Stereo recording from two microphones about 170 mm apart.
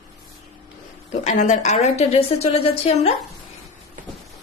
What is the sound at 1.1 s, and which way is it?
A woman's voice, 45° left (ahead or behind).